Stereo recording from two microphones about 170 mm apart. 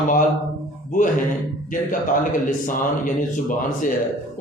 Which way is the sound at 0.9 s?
50° left (ahead or behind).